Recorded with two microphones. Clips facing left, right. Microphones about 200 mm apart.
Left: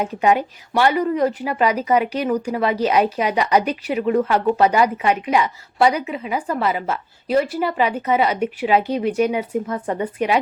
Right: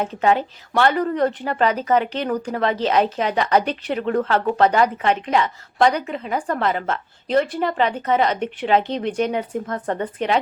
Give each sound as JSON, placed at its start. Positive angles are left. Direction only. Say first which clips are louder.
{"t": 0.0, "sound": "a woman's voice", "louder": "left 1 dB", "side_deg": 10}